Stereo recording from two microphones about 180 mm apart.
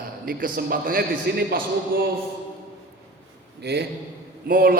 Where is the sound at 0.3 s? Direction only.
50° right (ahead or behind).